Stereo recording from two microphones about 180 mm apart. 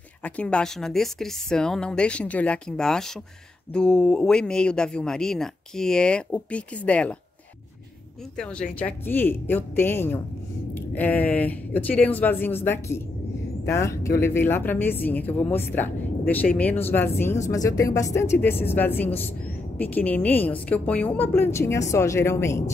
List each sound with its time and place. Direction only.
0.2 s speech: 5° left (ahead or behind)
8.4 s a woman's voice: 5° left (ahead or behind)